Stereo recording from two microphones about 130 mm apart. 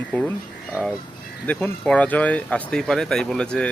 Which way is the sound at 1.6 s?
5° left (ahead or behind).